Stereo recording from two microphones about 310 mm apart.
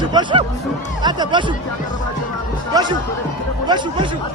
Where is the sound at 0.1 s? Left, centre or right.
Centre.